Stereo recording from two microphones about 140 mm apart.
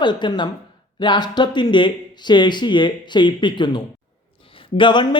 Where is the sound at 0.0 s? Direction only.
35° left (ahead or behind).